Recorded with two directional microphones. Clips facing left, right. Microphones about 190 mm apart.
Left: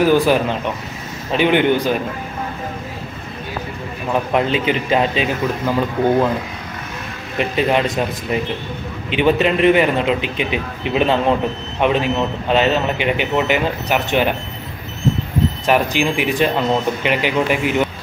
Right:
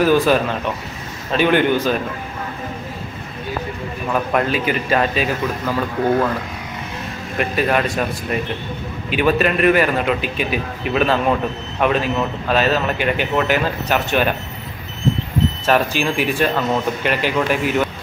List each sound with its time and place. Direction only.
0.0 s speech: 15° left (ahead or behind)
4.1 s a man's voice: 20° left (ahead or behind)
7.3 s a man's voice: 20° left (ahead or behind)
9.1 s a man's voice: 20° left (ahead or behind)
15.6 s speech: 15° left (ahead or behind)